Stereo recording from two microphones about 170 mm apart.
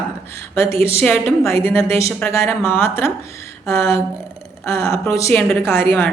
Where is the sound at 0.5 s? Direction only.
15° left (ahead or behind).